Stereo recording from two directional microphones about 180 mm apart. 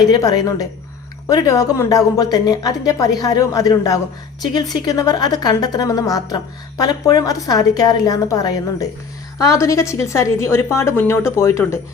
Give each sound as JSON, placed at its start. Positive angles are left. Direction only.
{"t": 0.0, "sound": "a woman's voice", "side_deg": 20}